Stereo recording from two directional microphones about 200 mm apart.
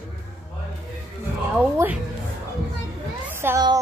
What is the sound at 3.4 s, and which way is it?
Speech, 15° right (ahead or behind).